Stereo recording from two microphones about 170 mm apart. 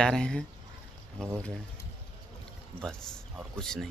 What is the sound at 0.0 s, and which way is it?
Speech, 5° left (ahead or behind).